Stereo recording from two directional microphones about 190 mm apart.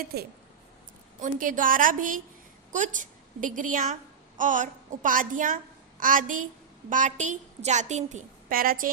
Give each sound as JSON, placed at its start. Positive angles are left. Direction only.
{"t": 0.0, "sound": "speech", "side_deg": -55}
{"t": 1.2, "sound": "a woman's voice", "side_deg": -45}